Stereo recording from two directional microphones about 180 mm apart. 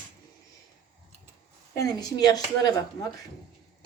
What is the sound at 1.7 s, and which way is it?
A woman's voice, 20° left (ahead or behind).